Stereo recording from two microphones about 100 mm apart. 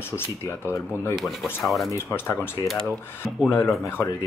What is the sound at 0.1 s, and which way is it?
Speech, 25° left (ahead or behind).